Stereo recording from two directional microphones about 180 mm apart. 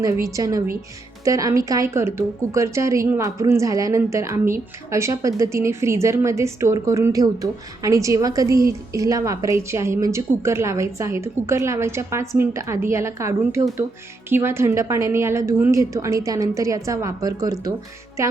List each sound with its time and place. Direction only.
0.3 s a woman's voice: 20° right (ahead or behind)